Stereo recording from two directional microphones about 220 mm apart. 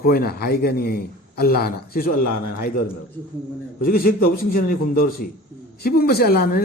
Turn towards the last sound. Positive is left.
turn(degrees=45)  # may be behind; listen again after turning